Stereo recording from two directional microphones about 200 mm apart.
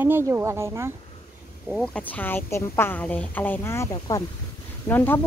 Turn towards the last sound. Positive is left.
turn(degrees=10)  # may be behind; listen again after turning